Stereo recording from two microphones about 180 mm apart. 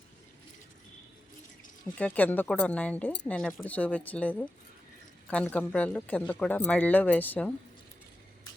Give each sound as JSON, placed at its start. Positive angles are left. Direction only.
{"t": 2.0, "sound": "speech", "side_deg": 10}